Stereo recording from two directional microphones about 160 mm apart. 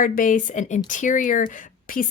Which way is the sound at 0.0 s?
55° left (ahead or behind).